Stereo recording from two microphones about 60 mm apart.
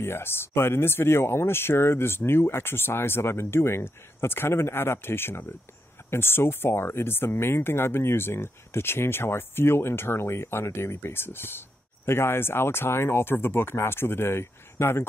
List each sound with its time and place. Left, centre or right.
0.0 s speech: left